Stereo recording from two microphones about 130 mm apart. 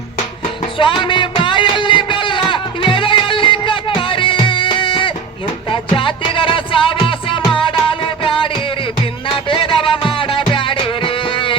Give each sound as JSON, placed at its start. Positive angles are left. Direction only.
{"t": 0.4, "sound": "music", "side_deg": 40}